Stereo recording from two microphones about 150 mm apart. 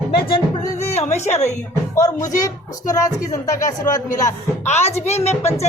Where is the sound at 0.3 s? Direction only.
35° left (ahead or behind).